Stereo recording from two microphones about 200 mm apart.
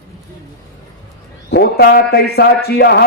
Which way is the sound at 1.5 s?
55° left (ahead or behind).